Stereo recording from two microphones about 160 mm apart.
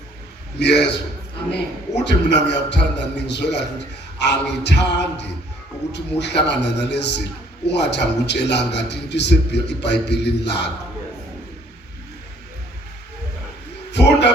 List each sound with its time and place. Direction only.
0.6 s a man's voice: 90° left
2.0 s a man's voice: 90° left
13.9 s a sound: 90° left